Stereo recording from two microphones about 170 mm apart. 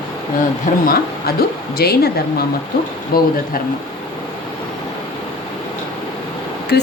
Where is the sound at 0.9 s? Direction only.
65° left (ahead or behind).